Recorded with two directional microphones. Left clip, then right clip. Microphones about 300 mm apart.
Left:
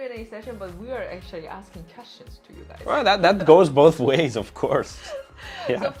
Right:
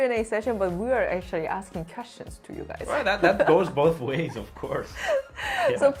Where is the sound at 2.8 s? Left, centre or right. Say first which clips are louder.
Left 4 dB; left.